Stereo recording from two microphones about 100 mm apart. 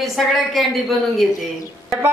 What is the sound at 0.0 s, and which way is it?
A woman's voice, centre (ahead or behind).